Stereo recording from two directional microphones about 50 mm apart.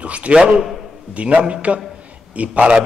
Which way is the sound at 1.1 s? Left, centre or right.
Right.